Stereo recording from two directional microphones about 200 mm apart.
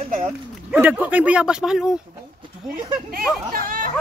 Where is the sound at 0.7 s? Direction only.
10° right (ahead or behind).